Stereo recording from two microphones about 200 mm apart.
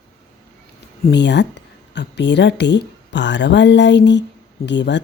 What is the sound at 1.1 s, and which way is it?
Speech, 60° left (ahead or behind).